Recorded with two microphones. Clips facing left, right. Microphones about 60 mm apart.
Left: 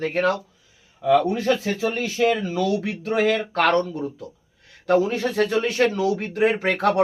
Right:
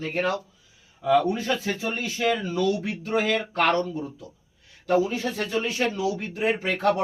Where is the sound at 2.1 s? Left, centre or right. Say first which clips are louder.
Left 3 dB; left.